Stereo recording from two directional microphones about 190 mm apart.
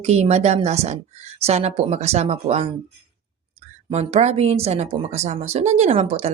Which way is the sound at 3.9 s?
35° right (ahead or behind).